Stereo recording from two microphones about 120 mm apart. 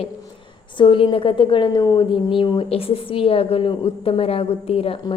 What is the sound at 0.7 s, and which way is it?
A woman's voice, 45° left (ahead or behind).